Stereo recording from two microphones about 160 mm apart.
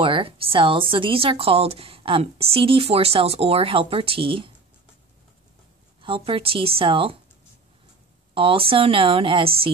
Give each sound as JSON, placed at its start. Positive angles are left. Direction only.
{"t": 0.0, "sound": "a woman's voice", "side_deg": -35}
{"t": 5.9, "sound": "a woman's voice", "side_deg": -35}
{"t": 8.4, "sound": "a woman's voice", "side_deg": -35}